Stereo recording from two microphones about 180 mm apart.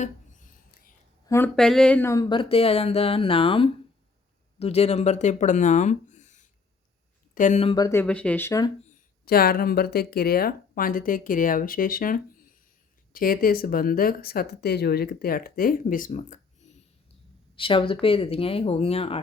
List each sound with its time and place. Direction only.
0.0 s a sound: 45° left (ahead or behind)
1.5 s speech: 5° left (ahead or behind); by 7.6 s 45° left (ahead or behind)
7.6 s speech: 25° left (ahead or behind)
8.0 s speech: 5° left (ahead or behind)
9.2 s speech: 55° left (ahead or behind); by 16.8 s 40° left (ahead or behind)
17.5 s speech: 30° left (ahead or behind)